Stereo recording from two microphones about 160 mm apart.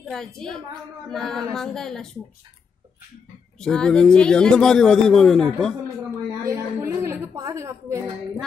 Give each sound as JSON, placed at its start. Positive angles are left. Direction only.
{"t": 0.0, "sound": "a man's voice", "side_deg": 0}
{"t": 3.5, "sound": "a man's voice", "side_deg": 5}
{"t": 6.4, "sound": "a sound", "side_deg": -20}